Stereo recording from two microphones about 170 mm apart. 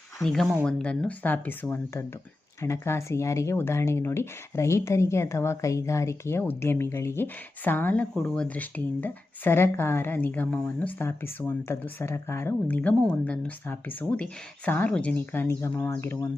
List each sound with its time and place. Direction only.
0.2 s speech: centre (ahead or behind)